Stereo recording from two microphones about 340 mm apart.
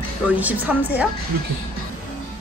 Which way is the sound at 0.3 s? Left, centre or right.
Centre.